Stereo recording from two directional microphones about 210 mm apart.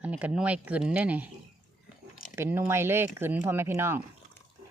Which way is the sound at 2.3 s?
10° right (ahead or behind).